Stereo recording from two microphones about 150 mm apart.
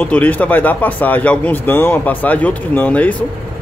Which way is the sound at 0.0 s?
10° left (ahead or behind).